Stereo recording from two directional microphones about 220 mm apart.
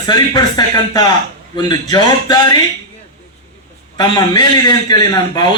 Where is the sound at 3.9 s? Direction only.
20° left (ahead or behind).